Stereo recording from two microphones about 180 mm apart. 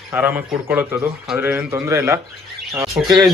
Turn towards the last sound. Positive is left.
turn(degrees=-10)  # may be behind; listen again after turning